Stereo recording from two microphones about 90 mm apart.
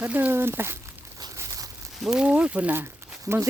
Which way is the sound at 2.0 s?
10° right (ahead or behind).